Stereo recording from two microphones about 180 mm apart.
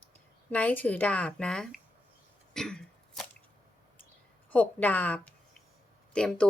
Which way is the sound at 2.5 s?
5° left (ahead or behind).